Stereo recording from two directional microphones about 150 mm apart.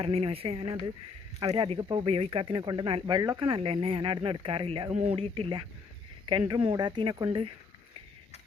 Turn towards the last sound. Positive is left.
turn(degrees=-35)  # may be behind; listen again after turning